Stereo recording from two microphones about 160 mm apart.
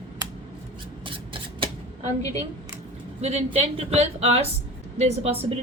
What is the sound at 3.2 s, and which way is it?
A woman's voice, 40° right (ahead or behind).